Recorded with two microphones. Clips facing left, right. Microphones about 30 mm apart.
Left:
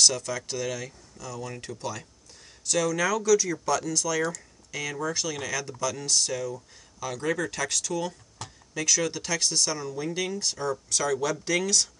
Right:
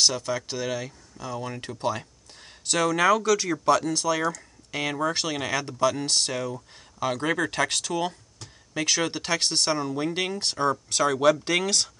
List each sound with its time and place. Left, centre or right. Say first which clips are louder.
0.0 s speech: right 1 dB; right